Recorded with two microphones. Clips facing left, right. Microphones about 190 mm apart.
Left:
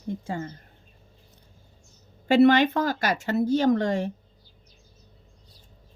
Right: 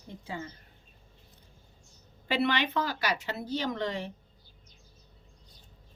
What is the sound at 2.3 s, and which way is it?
Speech, 45° left (ahead or behind).